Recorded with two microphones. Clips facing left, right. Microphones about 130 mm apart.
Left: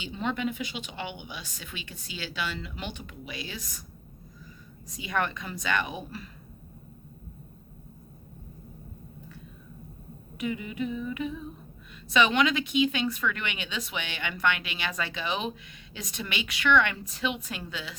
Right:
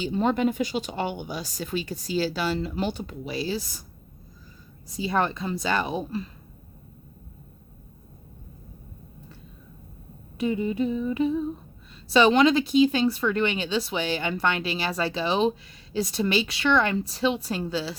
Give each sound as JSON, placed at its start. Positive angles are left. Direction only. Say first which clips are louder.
{"t": 0.0, "sound": "speech", "louder": "right 8 dB", "side_deg": -40}
{"t": 4.9, "sound": "speech", "louder": "right 5 dB", "side_deg": -30}
{"t": 10.3, "sound": "speech", "louder": "right 7 dB", "side_deg": -30}